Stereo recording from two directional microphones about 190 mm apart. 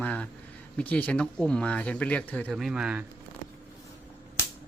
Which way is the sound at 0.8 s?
10° left (ahead or behind).